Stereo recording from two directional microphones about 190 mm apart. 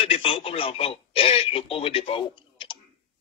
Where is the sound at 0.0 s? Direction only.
30° left (ahead or behind).